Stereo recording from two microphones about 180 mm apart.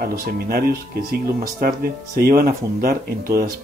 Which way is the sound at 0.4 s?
55° right (ahead or behind).